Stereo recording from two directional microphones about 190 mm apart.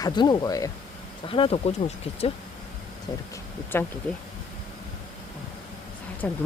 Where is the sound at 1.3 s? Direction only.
30° left (ahead or behind).